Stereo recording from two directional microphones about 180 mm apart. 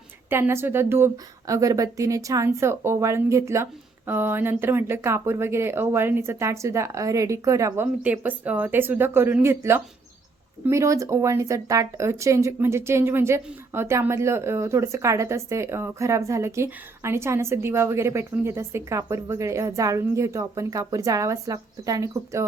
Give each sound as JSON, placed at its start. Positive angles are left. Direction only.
{"t": 0.3, "sound": "speech", "side_deg": -15}